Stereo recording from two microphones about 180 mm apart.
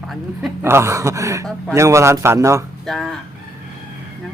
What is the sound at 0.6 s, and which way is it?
A man's voice, 15° right (ahead or behind).